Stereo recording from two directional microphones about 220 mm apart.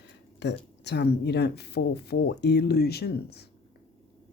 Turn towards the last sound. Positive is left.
turn(degrees=45)  # may be behind; listen again after turning